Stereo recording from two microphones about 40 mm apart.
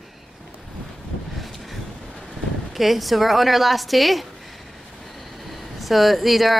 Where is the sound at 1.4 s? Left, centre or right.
Centre.